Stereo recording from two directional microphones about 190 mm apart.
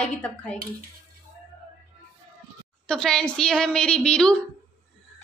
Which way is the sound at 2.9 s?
Centre (ahead or behind).